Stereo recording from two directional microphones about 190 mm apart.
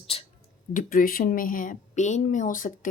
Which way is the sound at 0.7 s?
45° left (ahead or behind).